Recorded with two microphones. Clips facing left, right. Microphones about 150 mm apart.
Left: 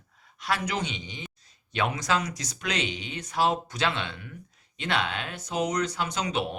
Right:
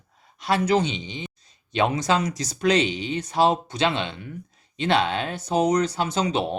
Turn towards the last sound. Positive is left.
turn(degrees=-30)  # may be behind; listen again after turning